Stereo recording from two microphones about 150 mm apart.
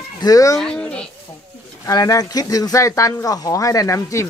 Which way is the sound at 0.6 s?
5° left (ahead or behind).